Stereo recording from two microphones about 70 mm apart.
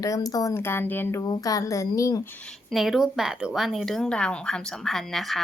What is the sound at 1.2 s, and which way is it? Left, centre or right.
Speech, left.